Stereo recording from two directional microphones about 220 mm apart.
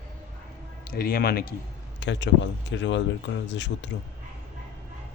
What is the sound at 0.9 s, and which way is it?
Speech, 40° left (ahead or behind).